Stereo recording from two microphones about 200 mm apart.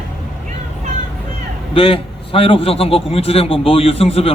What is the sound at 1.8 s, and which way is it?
A man's voice, 25° left (ahead or behind).